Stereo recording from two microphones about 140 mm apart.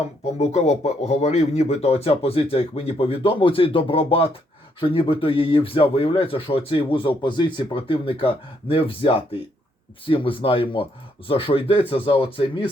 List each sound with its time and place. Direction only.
0.3 s speech: 50° left (ahead or behind)